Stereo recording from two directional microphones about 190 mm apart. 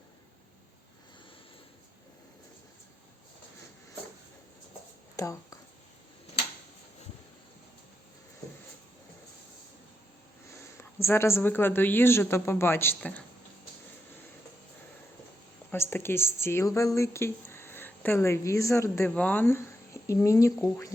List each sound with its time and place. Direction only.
5.1 s a sound: 15° left (ahead or behind)
10.5 s speech: 15° left (ahead or behind)
15.7 s speech: 10° left (ahead or behind)